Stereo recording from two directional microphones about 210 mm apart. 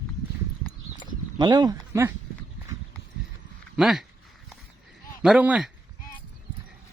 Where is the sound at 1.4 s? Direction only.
20° right (ahead or behind).